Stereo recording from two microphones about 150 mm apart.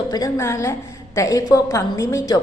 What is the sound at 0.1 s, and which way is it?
A woman's voice, 20° left (ahead or behind).